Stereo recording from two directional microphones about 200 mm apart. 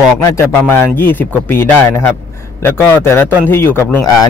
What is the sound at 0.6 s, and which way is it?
A man's voice, 10° left (ahead or behind).